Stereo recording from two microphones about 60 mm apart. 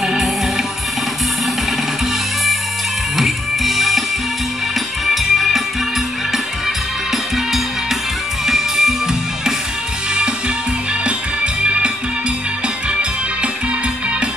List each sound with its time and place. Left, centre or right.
0.0 s music: centre
3.2 s music: centre
5.0 s music: centre
8.5 s music: centre
11.1 s music: centre